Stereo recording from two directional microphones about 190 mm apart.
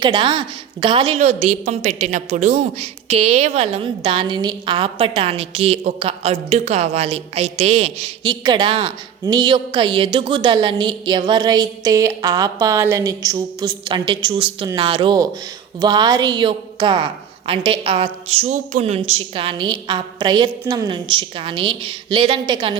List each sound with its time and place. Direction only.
0.0 s a woman's voice: 25° right (ahead or behind)